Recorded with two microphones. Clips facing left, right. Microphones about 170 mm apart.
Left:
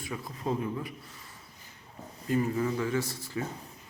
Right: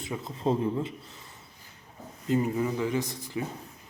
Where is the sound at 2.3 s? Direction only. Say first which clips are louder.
Right 2 dB; 20° right (ahead or behind).